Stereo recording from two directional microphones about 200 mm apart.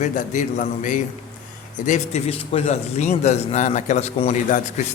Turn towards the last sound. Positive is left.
turn(degrees=35)  # may be behind; listen again after turning